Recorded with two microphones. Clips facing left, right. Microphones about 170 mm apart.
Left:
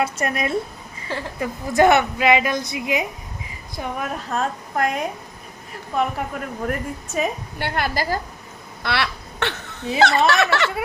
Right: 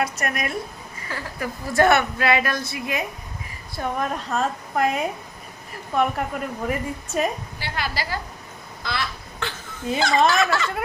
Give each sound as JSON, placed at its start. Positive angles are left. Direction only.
{"t": 0.0, "sound": "speech", "side_deg": 25}
{"t": 3.8, "sound": "a woman's voice", "side_deg": 5}
{"t": 7.6, "sound": "a woman's voice", "side_deg": 55}
{"t": 8.8, "sound": "a sound", "side_deg": 70}
{"t": 10.2, "sound": "speech", "side_deg": 70}